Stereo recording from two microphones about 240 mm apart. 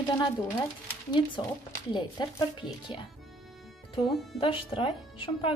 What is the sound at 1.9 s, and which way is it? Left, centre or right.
Speech, centre.